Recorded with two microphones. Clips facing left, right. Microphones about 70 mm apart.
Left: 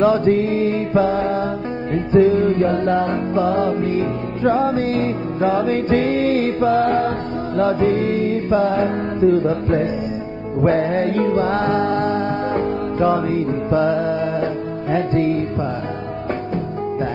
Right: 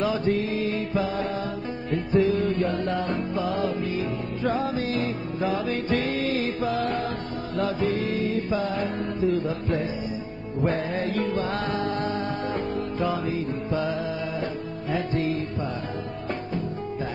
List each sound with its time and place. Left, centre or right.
0.0 s music: left
1.0 s music: left
4.4 s music: left
12.0 s music: left
12.5 s music: left
13.7 s music: left